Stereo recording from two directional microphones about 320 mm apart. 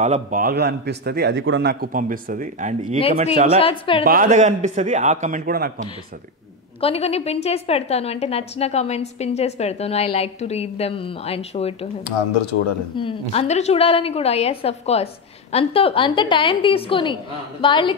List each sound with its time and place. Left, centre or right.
0.0 s speech: right
3.5 s a woman's voice: centre
4.0 s speech: right
6.8 s a woman's voice: centre
12.9 s a woman's voice: centre